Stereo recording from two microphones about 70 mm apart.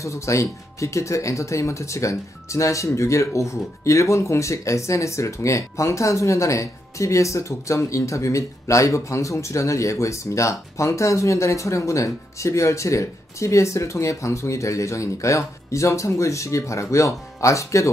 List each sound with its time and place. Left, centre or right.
0.0 s speech: left